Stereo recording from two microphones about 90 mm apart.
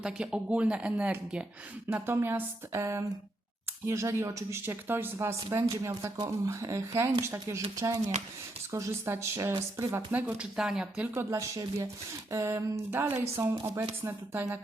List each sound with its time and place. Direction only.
0.0 s speech: 10° right (ahead or behind); by 6.1 s 35° right (ahead or behind)
6.1 s speech: 45° right (ahead or behind)
6.5 s speech: 35° right (ahead or behind)
10.5 s speech: 5° right (ahead or behind)
11.1 s speech: 30° right (ahead or behind)